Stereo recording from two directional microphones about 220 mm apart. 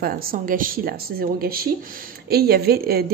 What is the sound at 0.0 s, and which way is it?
A woman's voice, 40° right (ahead or behind).